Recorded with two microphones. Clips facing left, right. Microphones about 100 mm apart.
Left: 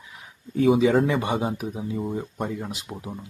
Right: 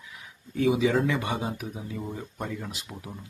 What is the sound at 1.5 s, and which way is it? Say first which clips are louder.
Speech: left 6 dB; 25° left (ahead or behind).